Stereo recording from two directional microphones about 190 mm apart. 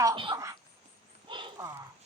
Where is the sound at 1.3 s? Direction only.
25° right (ahead or behind).